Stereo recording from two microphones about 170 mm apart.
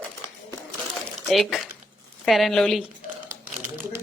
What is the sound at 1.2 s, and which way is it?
A woman's voice, centre (ahead or behind).